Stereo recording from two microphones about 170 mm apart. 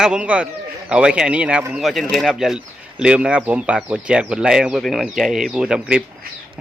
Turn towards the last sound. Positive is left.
turn(degrees=-5)  # may be behind; listen again after turning